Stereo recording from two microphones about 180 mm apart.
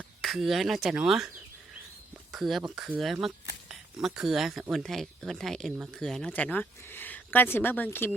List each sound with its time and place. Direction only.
0.2 s speech: centre (ahead or behind)
2.3 s speech: centre (ahead or behind)